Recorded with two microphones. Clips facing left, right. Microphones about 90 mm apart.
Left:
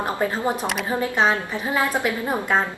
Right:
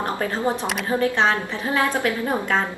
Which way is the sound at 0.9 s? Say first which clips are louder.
Right 1 dB; 10° left (ahead or behind).